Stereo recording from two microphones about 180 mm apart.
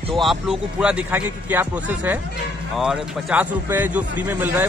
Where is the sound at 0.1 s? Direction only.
Centre (ahead or behind).